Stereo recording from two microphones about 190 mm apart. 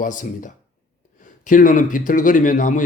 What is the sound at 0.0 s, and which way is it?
A man's voice, 45° left (ahead or behind).